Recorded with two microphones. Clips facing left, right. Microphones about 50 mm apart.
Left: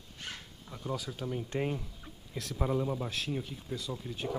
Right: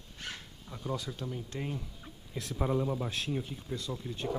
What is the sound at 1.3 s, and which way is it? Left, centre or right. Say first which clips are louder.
Speech: left 8 dB; left.